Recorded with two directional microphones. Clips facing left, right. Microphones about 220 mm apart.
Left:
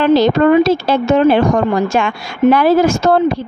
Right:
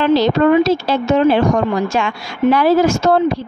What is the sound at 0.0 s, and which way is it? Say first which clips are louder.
Speech: left 2 dB; 50° left (ahead or behind).